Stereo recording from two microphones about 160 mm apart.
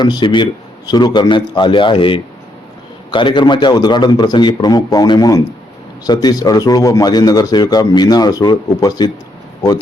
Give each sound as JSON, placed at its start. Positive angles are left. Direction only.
{"t": 0.0, "sound": "speech", "side_deg": 30}